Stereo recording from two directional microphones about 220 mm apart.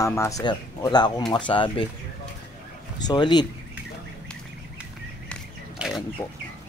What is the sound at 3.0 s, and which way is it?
Speech, 20° left (ahead or behind).